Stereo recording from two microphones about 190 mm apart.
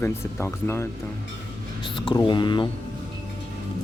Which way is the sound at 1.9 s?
25° left (ahead or behind).